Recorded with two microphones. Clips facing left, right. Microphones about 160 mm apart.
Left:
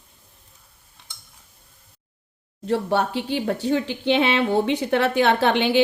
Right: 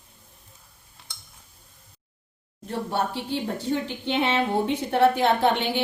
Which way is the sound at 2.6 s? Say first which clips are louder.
Left 6 dB; 75° left (ahead or behind).